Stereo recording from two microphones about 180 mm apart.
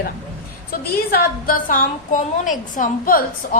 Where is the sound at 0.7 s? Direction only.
55° left (ahead or behind).